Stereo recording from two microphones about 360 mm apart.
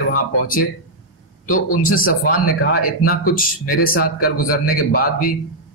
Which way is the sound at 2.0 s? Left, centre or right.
Left.